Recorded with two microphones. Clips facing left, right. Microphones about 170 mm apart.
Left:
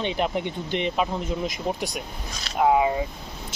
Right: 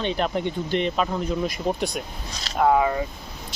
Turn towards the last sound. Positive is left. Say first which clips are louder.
# right 1 dB
turn(degrees=15)  # may be behind; listen again after turning